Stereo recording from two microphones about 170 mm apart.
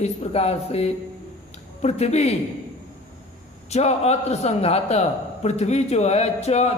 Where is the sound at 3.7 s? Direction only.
40° left (ahead or behind).